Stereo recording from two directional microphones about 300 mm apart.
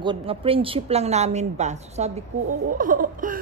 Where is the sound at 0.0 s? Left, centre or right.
Centre.